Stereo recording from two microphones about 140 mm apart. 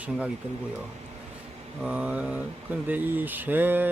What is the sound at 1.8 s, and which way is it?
Speech, 10° right (ahead or behind).